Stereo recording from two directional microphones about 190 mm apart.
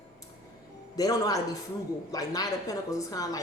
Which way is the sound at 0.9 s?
20° left (ahead or behind).